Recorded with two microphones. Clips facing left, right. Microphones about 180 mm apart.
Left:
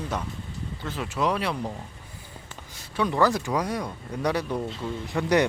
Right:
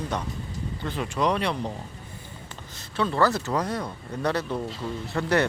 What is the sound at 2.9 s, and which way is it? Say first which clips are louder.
Speech: even; 15° left (ahead or behind).